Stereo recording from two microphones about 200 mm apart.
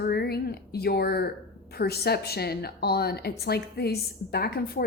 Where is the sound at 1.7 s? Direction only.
50° left (ahead or behind).